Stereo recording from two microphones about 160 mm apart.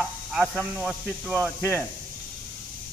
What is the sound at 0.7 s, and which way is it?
Speech, 10° right (ahead or behind).